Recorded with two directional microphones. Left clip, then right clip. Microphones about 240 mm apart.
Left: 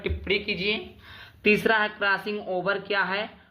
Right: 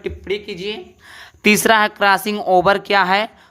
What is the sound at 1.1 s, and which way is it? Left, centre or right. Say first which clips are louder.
A woman's voice: right 7 dB; right.